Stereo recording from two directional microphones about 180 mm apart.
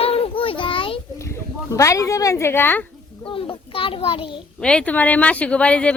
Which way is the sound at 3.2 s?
30° left (ahead or behind).